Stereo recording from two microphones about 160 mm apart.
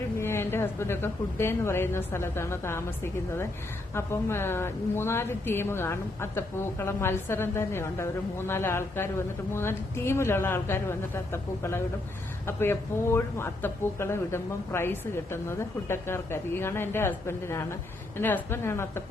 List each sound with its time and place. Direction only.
0.2 s a woman's voice: 15° left (ahead or behind)